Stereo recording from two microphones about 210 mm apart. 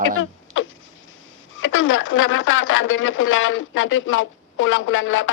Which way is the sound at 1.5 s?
70° left (ahead or behind).